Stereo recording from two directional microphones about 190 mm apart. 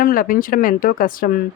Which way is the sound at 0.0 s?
45° left (ahead or behind).